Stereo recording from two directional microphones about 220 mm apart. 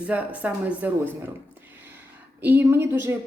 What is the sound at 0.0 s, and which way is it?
A woman's voice, 5° right (ahead or behind).